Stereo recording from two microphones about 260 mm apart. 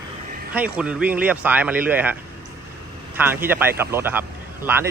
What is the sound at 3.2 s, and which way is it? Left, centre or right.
Speech, centre.